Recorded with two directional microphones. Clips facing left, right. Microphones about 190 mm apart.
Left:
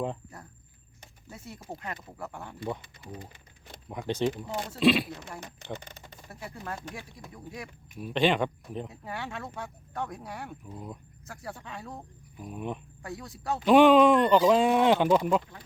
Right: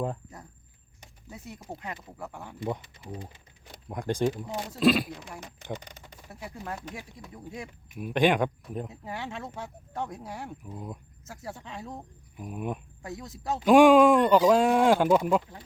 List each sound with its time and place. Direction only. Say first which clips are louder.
1.3 s speech: right 1 dB; 15° right (ahead or behind)
4.8 s speech: even; 40° right (ahead or behind)
5.0 s speech: even; 10° right (ahead or behind)
7.9 s speech: right 2 dB; 10° right (ahead or behind)
10.7 s speech: right 2 dB; 5° right (ahead or behind)
11.3 s speech: right 1 dB; 20° right (ahead or behind)
11.9 s speech: right 2 dB; 5° right (ahead or behind)
13.0 s speech: right 1 dB; 20° right (ahead or behind)
13.7 s speech: right 1 dB; 10° right (ahead or behind)